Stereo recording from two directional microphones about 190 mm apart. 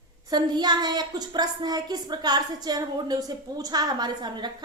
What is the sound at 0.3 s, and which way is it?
A woman's voice, 20° right (ahead or behind).